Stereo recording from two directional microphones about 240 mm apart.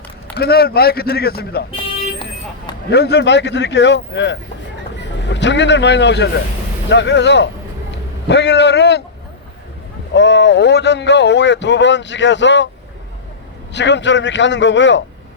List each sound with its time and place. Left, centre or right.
0.3 s a man's voice: left
2.9 s speech: left
10.2 s speech: left
13.7 s speech: left